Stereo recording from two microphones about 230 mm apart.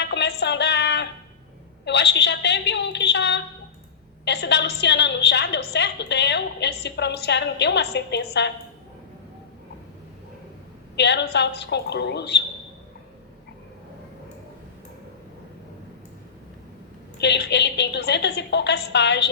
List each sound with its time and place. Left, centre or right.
0.0 s music: left
1.8 s a sound: left
4.3 s a woman's voice: left
10.9 s a woman's voice: left
17.2 s a woman's voice: left